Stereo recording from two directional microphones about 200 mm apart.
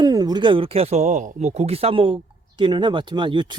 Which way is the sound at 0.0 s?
20° right (ahead or behind).